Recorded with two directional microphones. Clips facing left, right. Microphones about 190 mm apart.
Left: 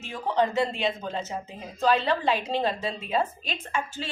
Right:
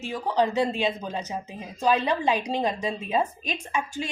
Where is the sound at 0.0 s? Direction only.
15° right (ahead or behind).